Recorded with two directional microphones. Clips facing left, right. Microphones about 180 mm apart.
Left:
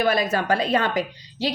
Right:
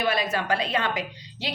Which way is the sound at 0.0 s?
45° left (ahead or behind).